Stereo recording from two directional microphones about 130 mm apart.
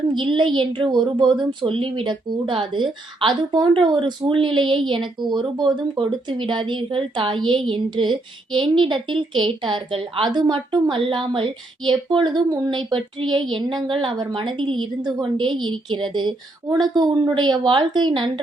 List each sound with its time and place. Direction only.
0.1 s speech: 40° right (ahead or behind)